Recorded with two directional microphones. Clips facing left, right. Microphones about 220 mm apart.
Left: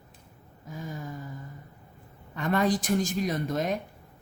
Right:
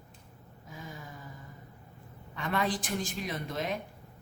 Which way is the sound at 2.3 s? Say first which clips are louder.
Left 6 dB; 45° left (ahead or behind).